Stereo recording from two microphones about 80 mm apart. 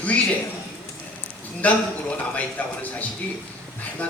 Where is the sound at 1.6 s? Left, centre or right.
Centre.